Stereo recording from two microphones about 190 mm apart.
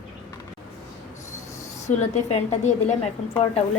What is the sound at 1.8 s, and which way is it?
A woman's voice, 35° left (ahead or behind).